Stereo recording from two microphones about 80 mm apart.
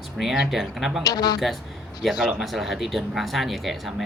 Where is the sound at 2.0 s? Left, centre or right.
Centre.